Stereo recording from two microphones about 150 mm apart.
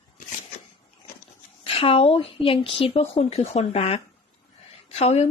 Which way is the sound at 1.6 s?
40° left (ahead or behind).